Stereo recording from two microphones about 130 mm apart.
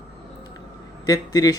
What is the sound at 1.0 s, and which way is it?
Speech, 25° left (ahead or behind).